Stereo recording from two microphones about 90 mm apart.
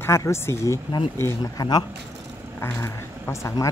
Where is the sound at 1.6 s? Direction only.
50° left (ahead or behind).